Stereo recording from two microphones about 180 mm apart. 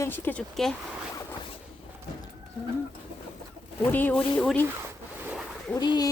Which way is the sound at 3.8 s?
10° left (ahead or behind).